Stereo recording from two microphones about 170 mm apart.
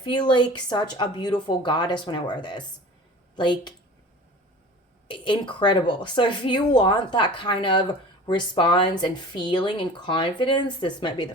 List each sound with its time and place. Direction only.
0.0 s speech: 25° left (ahead or behind)
5.0 s speech: 30° left (ahead or behind)